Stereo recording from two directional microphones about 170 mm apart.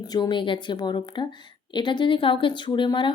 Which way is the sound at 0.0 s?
25° left (ahead or behind).